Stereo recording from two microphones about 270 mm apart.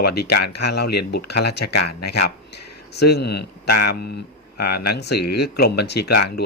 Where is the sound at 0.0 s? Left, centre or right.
Left.